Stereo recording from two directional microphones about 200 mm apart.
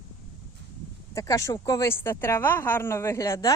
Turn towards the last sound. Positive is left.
turn(degrees=15)  # may be behind; listen again after turning